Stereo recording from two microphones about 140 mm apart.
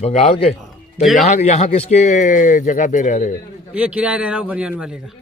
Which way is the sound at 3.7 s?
10° right (ahead or behind).